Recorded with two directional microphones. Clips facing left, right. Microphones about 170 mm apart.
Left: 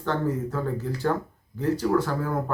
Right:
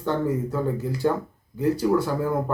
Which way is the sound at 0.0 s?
10° right (ahead or behind).